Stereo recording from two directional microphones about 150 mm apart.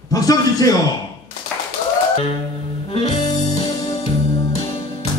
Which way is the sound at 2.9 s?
45° left (ahead or behind).